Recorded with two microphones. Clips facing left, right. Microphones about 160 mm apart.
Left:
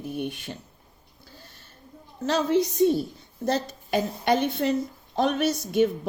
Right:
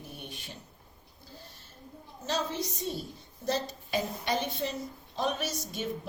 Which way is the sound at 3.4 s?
60° left (ahead or behind).